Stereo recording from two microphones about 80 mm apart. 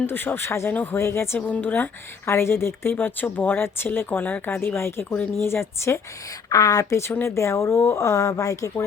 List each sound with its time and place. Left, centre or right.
0.0 s speech: left
1.4 s speech: centre
6.5 s a woman's voice: left
7.0 s speech: left